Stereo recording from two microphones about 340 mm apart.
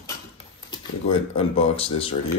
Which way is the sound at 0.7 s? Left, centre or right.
Centre.